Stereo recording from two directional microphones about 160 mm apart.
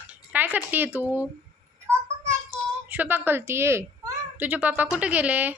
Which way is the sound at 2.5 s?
10° right (ahead or behind).